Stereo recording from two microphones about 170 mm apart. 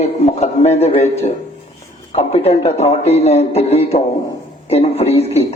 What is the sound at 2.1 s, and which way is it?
Speech, 35° left (ahead or behind).